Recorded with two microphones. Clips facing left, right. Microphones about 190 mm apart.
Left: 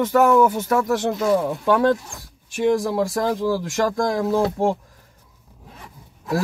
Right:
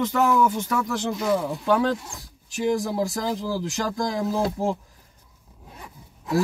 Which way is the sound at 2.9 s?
55° left (ahead or behind).